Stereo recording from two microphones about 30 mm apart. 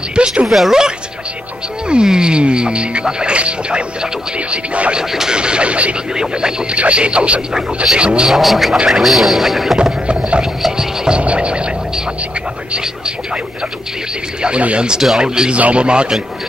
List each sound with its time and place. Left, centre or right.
0.1 s speech: right
0.5 s speech: centre
1.9 s speech: right
3.3 s speech: right
5.3 s speech: right
7.5 s speech: centre
8.0 s speech: right
8.3 s speech: centre
11.1 s speech: right
15.1 s speech: right
15.5 s speech: right